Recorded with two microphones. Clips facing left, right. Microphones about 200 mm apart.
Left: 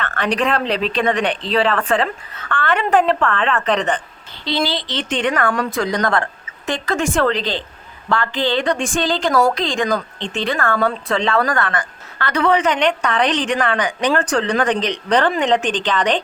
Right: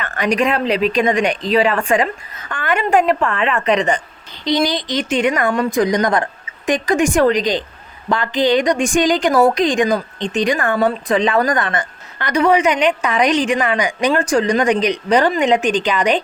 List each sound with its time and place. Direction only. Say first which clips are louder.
0.0 s speech: right 2 dB; 10° right (ahead or behind)